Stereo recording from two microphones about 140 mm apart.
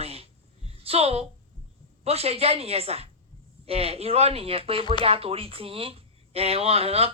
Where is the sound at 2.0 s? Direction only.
45° right (ahead or behind).